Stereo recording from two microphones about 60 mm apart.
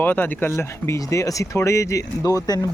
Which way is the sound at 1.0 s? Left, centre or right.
Left.